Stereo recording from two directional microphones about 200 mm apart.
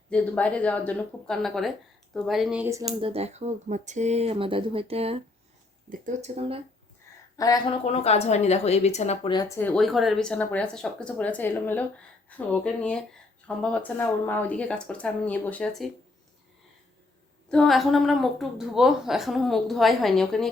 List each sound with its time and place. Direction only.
0.1 s a woman's voice: 5° left (ahead or behind); by 2.8 s 10° right (ahead or behind)
3.0 s speech: 30° right (ahead or behind)
7.3 s speech: 20° left (ahead or behind)
7.9 s a woman's voice: 30° left (ahead or behind)
9.6 s a woman's voice: 5° left (ahead or behind)
17.5 s a woman's voice: centre (ahead or behind)